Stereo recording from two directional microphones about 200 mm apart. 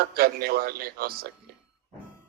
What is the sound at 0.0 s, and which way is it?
Speech, 50° right (ahead or behind).